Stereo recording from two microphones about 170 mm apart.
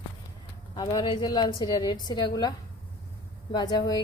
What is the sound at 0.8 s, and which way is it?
Speech, 25° left (ahead or behind).